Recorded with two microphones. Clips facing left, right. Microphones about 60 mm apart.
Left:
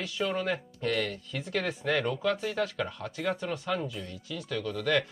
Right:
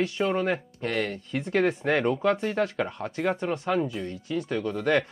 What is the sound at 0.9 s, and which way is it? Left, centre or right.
Speech, right.